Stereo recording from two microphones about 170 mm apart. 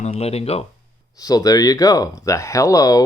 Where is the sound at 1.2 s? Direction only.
20° left (ahead or behind).